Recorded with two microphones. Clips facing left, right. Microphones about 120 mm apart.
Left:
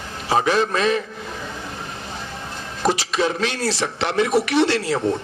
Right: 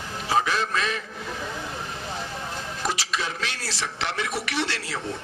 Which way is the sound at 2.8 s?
20° left (ahead or behind).